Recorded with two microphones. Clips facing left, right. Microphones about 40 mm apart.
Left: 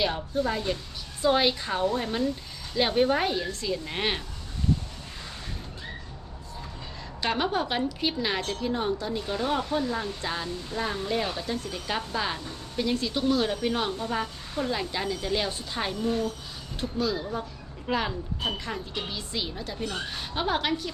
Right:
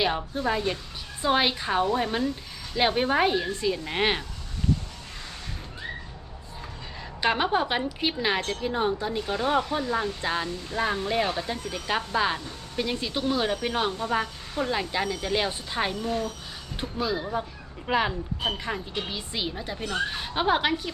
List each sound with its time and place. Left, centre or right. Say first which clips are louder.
0.0 s speech: right 1 dB; centre
7.2 s speech: right 3 dB; centre